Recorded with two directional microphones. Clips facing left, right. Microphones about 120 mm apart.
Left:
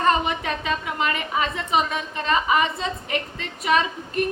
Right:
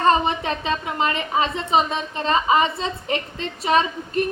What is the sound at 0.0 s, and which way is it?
A woman's voice, 30° right (ahead or behind).